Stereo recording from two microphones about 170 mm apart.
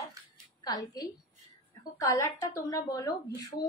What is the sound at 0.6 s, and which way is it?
A woman's voice, 25° left (ahead or behind).